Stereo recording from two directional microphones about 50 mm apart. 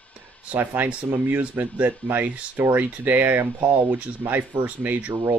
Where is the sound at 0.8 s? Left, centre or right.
Right.